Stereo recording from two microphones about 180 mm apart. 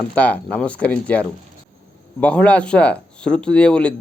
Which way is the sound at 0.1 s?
10° left (ahead or behind).